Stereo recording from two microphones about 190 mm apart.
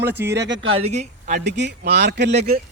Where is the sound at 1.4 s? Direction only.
65° right (ahead or behind).